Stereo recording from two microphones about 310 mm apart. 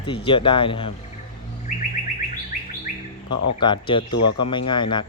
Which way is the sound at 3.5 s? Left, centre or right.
Centre.